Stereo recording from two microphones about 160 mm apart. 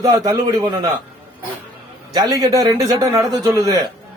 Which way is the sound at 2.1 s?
25° right (ahead or behind).